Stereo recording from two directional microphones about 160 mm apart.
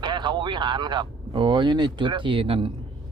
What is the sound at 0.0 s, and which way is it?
A man's voice, 30° right (ahead or behind).